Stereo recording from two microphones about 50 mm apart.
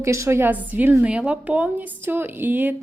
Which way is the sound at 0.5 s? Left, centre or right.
Right.